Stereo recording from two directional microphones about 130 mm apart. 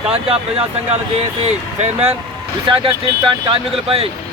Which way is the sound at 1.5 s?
55° right (ahead or behind).